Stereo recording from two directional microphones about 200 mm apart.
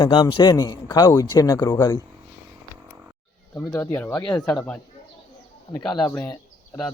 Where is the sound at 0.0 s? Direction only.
25° left (ahead or behind).